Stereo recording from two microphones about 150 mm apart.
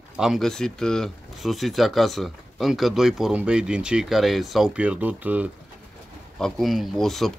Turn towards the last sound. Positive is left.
turn(degrees=0)  # may be behind; listen again after turning